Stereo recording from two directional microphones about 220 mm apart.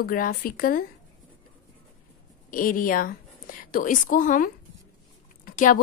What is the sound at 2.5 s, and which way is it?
A woman's voice, 40° left (ahead or behind).